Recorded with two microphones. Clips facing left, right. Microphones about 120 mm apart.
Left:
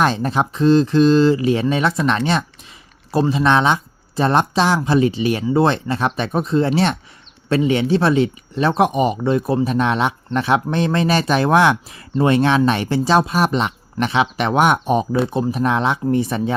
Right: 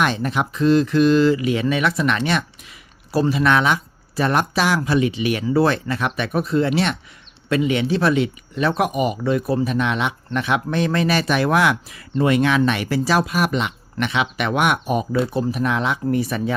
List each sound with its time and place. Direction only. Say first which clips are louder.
0.0 s speech: left 3 dB; 30° left (ahead or behind)